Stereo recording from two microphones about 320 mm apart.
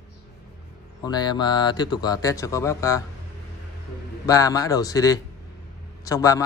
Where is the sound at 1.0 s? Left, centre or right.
Centre.